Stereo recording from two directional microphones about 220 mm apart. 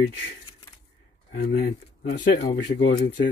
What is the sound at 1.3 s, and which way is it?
Speech, 50° left (ahead or behind).